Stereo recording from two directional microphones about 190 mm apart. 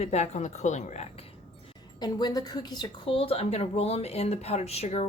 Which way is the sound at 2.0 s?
20° left (ahead or behind).